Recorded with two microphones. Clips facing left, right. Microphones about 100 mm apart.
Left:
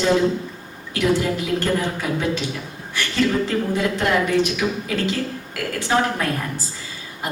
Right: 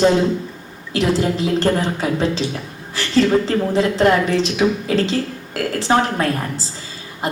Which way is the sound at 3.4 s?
30° right (ahead or behind).